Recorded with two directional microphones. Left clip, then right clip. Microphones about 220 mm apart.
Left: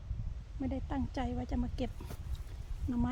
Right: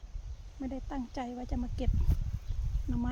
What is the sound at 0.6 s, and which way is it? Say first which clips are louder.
Speech: left 1 dB; 10° left (ahead or behind).